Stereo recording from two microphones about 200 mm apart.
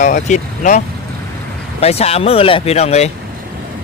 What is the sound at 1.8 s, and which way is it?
Speech, 30° left (ahead or behind).